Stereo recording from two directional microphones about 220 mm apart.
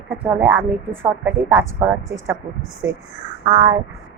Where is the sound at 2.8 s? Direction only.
10° right (ahead or behind).